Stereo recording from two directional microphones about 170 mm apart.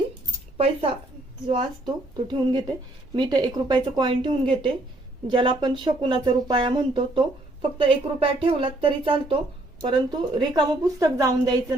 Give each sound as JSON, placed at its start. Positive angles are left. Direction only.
{"t": 0.5, "sound": "a woman's voice", "side_deg": -35}